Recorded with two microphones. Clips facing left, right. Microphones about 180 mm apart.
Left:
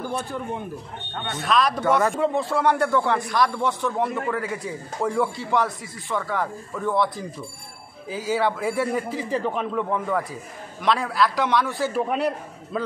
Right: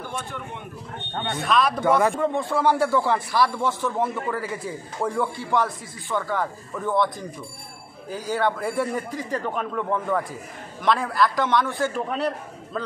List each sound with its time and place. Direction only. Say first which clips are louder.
0.1 s speech: left 5 dB; 35° left (ahead or behind)
1.3 s speech: even; centre (ahead or behind)